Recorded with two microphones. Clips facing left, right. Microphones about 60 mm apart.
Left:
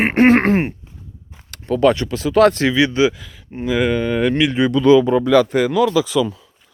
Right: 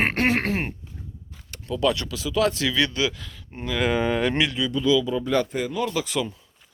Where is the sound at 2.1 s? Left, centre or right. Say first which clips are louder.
Left 10 dB; left.